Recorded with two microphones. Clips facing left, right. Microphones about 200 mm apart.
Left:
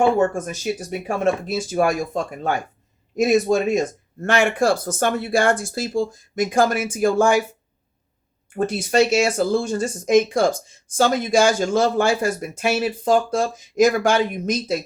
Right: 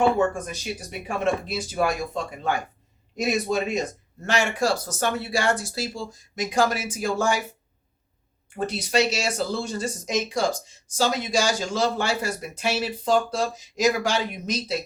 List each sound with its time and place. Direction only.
0.2 s speech: 45° left (ahead or behind)
8.5 s speech: 50° left (ahead or behind)